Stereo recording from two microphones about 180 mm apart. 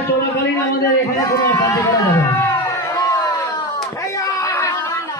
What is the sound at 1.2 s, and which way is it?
Run, 20° left (ahead or behind).